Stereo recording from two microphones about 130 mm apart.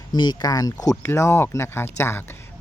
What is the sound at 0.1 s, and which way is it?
Speech, 35° left (ahead or behind).